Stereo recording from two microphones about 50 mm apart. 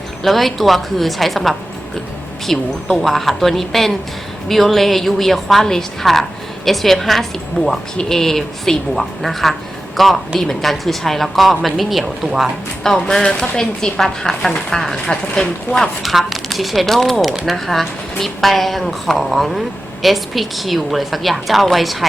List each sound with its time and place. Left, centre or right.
0.2 s a woman's voice: centre
12.2 s speech: centre
12.8 s a woman's voice: centre
16.0 s a woman's voice: centre